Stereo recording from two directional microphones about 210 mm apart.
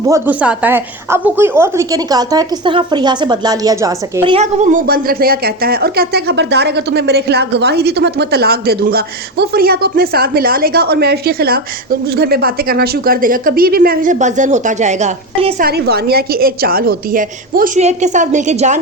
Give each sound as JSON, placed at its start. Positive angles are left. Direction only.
{"t": 0.1, "sound": "a woman's voice", "side_deg": -5}
{"t": 4.2, "sound": "speech", "side_deg": -30}
{"t": 15.5, "sound": "a woman's voice", "side_deg": -45}